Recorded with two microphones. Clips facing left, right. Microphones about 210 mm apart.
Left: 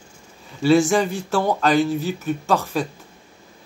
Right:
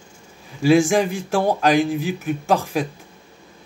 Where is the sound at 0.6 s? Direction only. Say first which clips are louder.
Right 1 dB; 10° right (ahead or behind).